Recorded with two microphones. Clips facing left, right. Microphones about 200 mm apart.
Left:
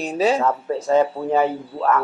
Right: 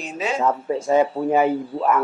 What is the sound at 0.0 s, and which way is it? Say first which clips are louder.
Speech: left 7 dB; 35° left (ahead or behind).